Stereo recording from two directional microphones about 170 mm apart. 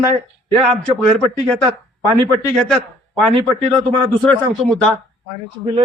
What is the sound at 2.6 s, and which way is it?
A man's voice, centre (ahead or behind).